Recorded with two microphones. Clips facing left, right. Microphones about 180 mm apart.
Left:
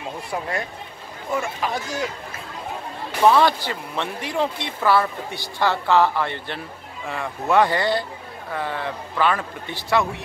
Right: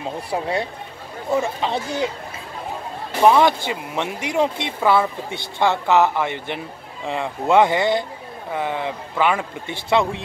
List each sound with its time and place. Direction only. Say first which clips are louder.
0.3 s speech: right 4 dB; 30° right (ahead or behind)
3.2 s a man's voice: right 2 dB; 20° right (ahead or behind)